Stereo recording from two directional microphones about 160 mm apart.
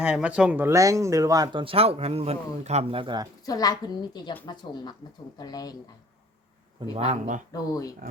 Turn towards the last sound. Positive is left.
turn(degrees=20)  # may be behind; listen again after turning